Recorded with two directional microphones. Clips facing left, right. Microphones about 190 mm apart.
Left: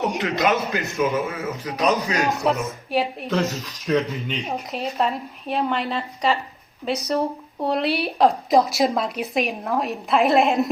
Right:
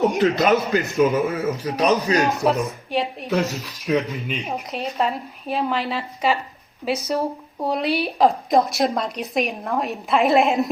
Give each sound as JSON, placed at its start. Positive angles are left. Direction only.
{"t": 0.2, "sound": "speech", "side_deg": -35}
{"t": 2.1, "sound": "speech", "side_deg": 0}
{"t": 3.8, "sound": "speech", "side_deg": -10}